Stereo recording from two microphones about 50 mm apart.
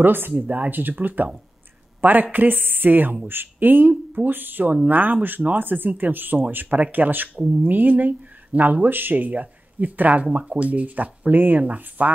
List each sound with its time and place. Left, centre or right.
0.0 s speech: right
2.0 s a sound: right
2.3 s speech: right